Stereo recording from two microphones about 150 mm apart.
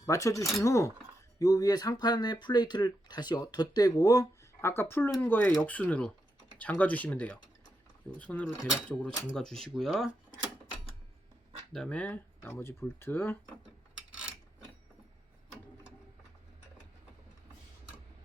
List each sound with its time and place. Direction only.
0.0 s speech: 20° left (ahead or behind); by 10.1 s centre (ahead or behind)
11.7 s speech: 5° left (ahead or behind)
14.1 s a sound: 5° right (ahead or behind)